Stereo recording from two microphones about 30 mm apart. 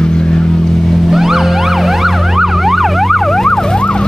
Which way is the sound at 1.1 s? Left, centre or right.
Centre.